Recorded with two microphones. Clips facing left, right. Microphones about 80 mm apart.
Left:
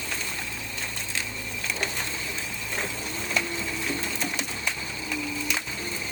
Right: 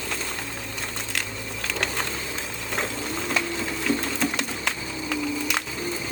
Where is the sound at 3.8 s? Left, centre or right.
Right.